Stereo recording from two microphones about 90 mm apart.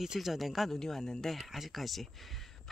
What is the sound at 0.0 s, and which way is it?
Speech, 5° right (ahead or behind).